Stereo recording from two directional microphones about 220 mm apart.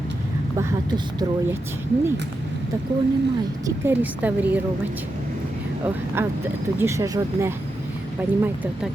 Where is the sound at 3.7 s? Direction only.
10° right (ahead or behind).